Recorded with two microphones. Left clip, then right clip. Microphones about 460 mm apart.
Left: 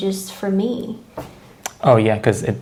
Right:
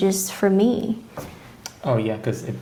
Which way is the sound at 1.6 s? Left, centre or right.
Left.